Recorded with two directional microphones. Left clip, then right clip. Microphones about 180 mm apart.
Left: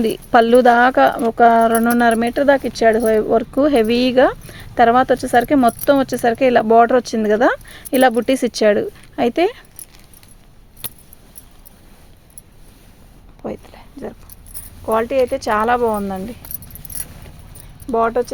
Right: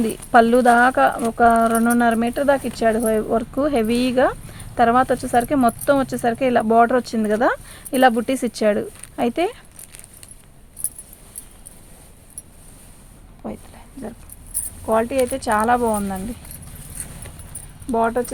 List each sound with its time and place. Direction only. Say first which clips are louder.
0.0 s speech: left 1 dB; 40° left (ahead or behind)
13.4 s a sound: left 5 dB; 50° left (ahead or behind)
14.8 s speech: left 3 dB; 55° left (ahead or behind)
17.9 s speech: left 3 dB; 55° left (ahead or behind)